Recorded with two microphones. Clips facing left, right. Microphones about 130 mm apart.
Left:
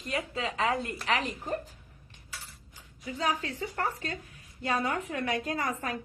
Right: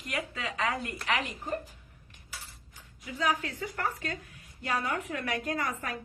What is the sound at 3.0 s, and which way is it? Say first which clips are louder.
A woman's voice: even; 35° left (ahead or behind).